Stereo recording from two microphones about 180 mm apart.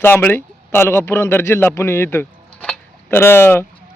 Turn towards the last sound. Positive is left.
turn(degrees=10)  # may be behind; listen again after turning